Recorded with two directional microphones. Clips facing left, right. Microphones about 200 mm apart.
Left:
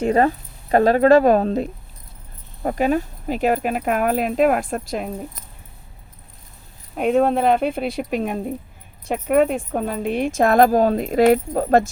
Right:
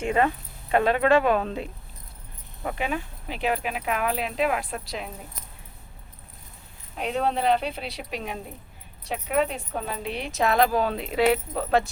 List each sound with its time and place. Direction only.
0.0 s speech: 40° left (ahead or behind)
6.9 s speech: 50° left (ahead or behind)